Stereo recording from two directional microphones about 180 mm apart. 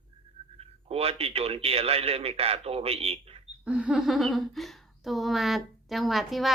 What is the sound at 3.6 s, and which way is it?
Speech, 5° right (ahead or behind).